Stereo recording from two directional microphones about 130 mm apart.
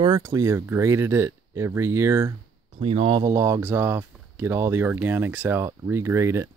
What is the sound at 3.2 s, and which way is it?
Speech, 25° right (ahead or behind).